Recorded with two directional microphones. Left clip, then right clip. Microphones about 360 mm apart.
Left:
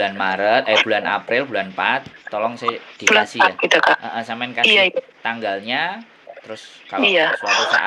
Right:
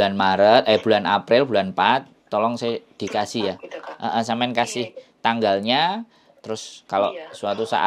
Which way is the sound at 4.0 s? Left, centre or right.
Right.